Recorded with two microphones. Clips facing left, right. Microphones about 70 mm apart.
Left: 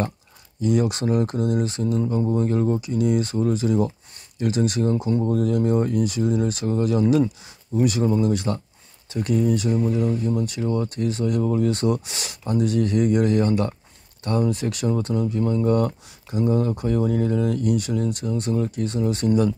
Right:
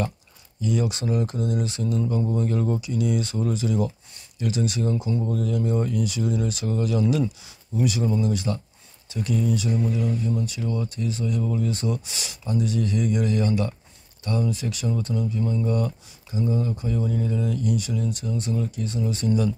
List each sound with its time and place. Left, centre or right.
0.6 s speech: left